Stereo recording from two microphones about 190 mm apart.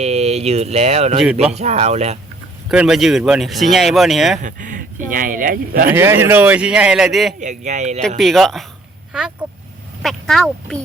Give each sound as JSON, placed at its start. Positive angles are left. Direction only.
{"t": 0.0, "sound": "speech", "side_deg": -35}
{"t": 2.6, "sound": "speech", "side_deg": -5}
{"t": 4.4, "sound": "speech", "side_deg": -45}
{"t": 5.9, "sound": "speech", "side_deg": -10}
{"t": 7.3, "sound": "speech", "side_deg": -40}
{"t": 8.2, "sound": "speech", "side_deg": 0}
{"t": 9.4, "sound": "vehicle", "side_deg": -5}
{"t": 10.0, "sound": "speech", "side_deg": 0}